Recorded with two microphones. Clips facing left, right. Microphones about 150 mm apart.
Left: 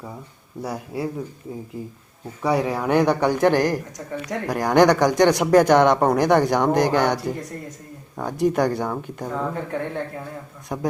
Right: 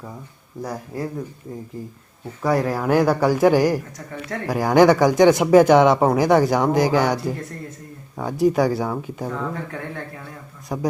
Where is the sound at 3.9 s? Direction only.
15° left (ahead or behind).